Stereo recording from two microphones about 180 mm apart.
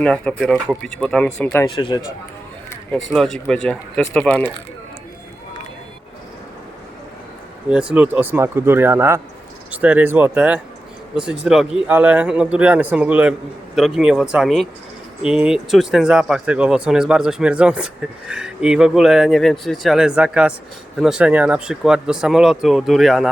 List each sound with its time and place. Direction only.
0.0 s speech: 5° left (ahead or behind)
1.5 s speech: 20° left (ahead or behind)
3.1 s speech: centre (ahead or behind)
7.7 s speech: 5° right (ahead or behind)